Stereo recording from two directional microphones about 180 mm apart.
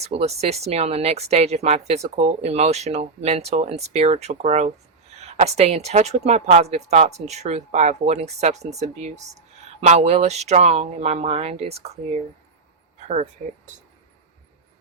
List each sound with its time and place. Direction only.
0.0 s speech: 35° right (ahead or behind)